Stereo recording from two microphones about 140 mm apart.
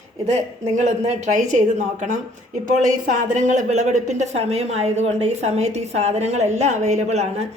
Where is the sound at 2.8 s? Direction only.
60° right (ahead or behind).